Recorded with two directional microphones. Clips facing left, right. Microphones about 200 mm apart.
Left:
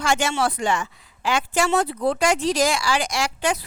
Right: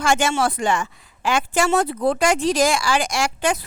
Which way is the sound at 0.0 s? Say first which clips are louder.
Right 2 dB; 50° right (ahead or behind).